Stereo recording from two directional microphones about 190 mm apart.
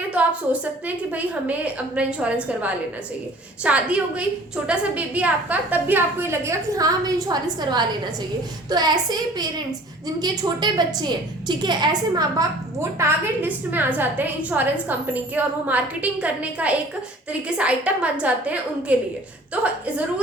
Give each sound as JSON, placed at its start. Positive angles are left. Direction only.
{"t": 0.1, "sound": "a woman's voice", "side_deg": -5}